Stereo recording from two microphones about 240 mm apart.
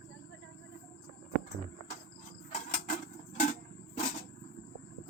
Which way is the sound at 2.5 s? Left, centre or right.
Left.